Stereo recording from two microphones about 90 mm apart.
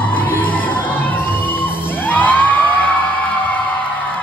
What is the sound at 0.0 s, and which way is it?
Music, 20° left (ahead or behind).